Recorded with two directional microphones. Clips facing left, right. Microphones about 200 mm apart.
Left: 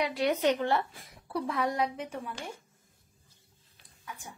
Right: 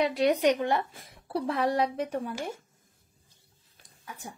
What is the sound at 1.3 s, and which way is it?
Speech, 30° right (ahead or behind).